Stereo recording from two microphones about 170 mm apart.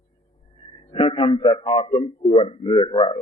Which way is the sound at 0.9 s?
30° left (ahead or behind).